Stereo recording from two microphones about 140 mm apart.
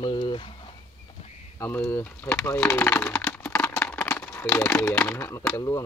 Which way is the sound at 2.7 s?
15° left (ahead or behind).